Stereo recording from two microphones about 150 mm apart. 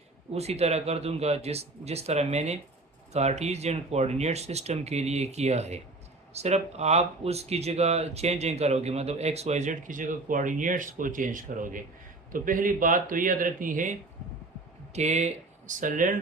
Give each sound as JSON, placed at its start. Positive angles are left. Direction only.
{"t": 0.3, "sound": "speech", "side_deg": -45}
{"t": 14.9, "sound": "speech", "side_deg": -50}